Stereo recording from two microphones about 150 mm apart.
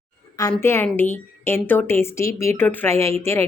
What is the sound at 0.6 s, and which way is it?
A woman's voice, 15° left (ahead or behind).